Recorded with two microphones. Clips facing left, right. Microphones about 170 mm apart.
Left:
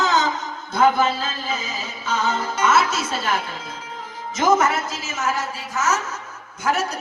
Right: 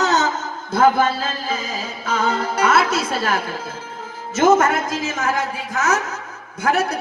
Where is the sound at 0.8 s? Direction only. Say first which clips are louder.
Right 2 dB; 50° right (ahead or behind).